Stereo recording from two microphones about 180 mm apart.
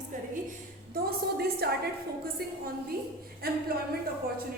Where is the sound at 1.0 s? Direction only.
60° right (ahead or behind).